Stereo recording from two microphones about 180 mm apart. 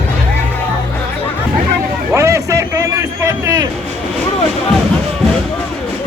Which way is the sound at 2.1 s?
15° right (ahead or behind).